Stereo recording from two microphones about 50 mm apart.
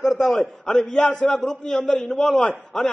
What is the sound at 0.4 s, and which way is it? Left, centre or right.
A man's voice, centre.